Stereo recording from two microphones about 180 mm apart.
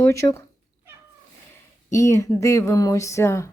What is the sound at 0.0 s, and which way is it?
Speech, 15° left (ahead or behind).